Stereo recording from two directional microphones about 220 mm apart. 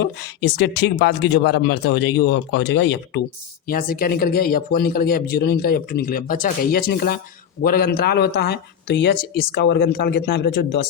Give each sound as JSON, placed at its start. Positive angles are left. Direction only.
{"t": 0.0, "sound": "speech", "side_deg": 50}
{"t": 3.7, "sound": "speech", "side_deg": 40}